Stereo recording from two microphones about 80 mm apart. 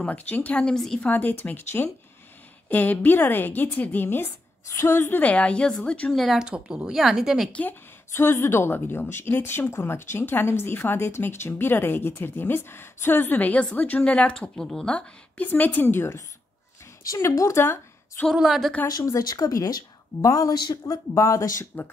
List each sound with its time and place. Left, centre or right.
0.0 s speech: left
4.6 s speech: left
5.2 s speech: centre
6.1 s a woman's voice: centre
6.4 s speech: centre
8.1 s speech: left; by 15.0 s centre
15.0 s a woman's voice: centre
18.3 s a woman's voice: centre
19.2 s speech: left